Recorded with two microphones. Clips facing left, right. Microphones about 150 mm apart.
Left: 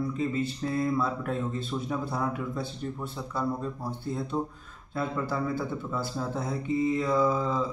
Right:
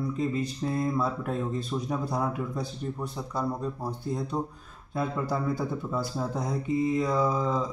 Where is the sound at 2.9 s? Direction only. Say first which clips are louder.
Right 1 dB; 15° right (ahead or behind).